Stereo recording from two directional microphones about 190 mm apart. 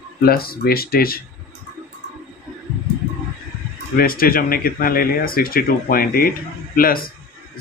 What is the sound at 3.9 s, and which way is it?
Speech, 50° left (ahead or behind).